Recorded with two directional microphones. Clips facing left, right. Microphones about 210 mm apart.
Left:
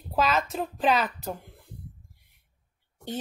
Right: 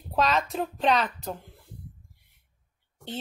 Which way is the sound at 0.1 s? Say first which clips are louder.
Even; centre (ahead or behind).